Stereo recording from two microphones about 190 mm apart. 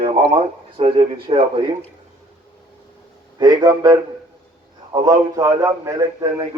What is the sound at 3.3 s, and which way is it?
A man's voice, 20° right (ahead or behind).